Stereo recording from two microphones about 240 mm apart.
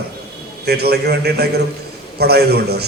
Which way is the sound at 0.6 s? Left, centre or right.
Right.